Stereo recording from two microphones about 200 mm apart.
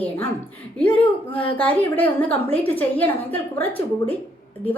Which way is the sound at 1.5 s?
5° left (ahead or behind).